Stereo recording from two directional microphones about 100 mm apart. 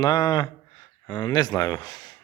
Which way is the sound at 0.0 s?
45° left (ahead or behind).